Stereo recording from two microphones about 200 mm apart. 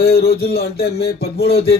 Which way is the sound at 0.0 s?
50° left (ahead or behind).